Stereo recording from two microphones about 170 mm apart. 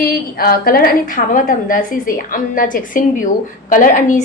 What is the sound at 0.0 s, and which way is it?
A woman's voice, 65° left (ahead or behind).